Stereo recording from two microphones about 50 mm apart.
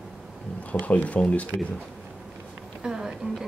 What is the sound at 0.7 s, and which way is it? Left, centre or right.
Speech, left.